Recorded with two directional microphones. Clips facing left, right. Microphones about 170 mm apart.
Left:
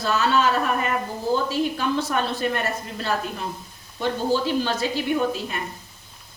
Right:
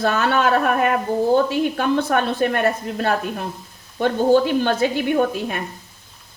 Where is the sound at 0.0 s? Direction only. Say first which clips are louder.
Right 2 dB; 60° right (ahead or behind).